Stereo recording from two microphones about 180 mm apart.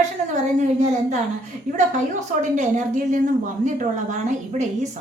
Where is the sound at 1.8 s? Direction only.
45° right (ahead or behind).